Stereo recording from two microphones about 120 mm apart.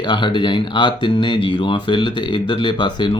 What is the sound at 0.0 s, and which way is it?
Speech, 40° left (ahead or behind).